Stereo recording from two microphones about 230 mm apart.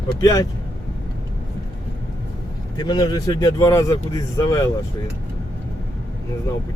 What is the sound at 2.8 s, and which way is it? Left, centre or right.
Speech, centre.